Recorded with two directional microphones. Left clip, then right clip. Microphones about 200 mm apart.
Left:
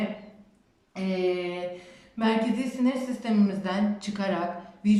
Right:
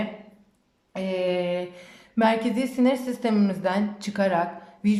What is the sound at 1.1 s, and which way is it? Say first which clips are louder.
A man's voice: right 3 dB; 40° right (ahead or behind).